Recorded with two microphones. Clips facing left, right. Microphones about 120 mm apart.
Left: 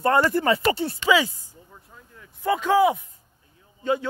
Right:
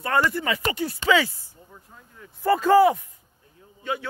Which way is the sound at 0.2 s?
45° left (ahead or behind).